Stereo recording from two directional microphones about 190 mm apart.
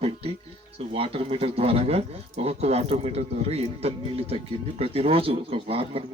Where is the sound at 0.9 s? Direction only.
30° right (ahead or behind).